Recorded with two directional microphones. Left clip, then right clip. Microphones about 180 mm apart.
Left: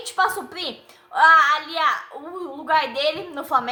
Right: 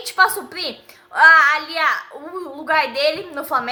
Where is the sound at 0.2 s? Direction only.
15° right (ahead or behind).